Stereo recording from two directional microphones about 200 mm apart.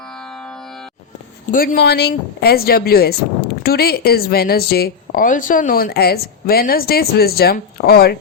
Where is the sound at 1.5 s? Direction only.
45° left (ahead or behind).